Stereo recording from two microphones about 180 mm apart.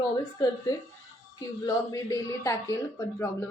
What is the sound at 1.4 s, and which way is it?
A woman's voice, 20° left (ahead or behind).